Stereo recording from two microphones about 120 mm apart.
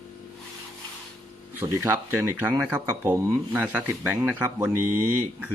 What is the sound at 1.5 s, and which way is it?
Speech, 20° right (ahead or behind).